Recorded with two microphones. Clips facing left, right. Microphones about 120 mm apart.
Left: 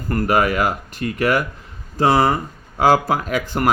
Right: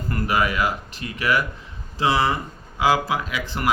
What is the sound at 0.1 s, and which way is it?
Speech, 45° left (ahead or behind).